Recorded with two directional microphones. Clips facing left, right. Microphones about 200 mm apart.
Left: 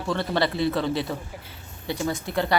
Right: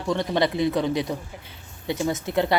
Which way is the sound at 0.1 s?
20° right (ahead or behind).